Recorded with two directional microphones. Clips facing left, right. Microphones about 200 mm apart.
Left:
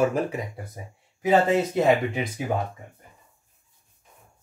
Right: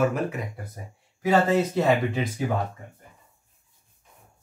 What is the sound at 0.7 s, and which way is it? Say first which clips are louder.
Speech: left 1 dB; 20° left (ahead or behind).